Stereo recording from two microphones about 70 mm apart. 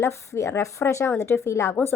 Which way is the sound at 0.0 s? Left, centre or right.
Left.